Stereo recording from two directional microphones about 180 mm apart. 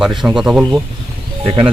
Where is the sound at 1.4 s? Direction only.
35° right (ahead or behind).